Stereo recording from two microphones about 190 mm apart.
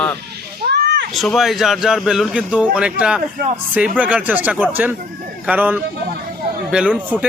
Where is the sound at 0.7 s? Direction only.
60° right (ahead or behind).